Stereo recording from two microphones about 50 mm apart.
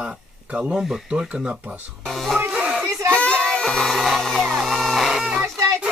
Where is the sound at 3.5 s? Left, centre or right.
Centre.